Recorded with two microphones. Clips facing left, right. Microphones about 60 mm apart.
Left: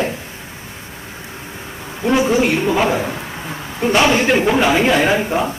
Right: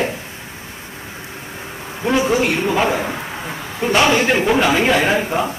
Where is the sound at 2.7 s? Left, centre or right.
Centre.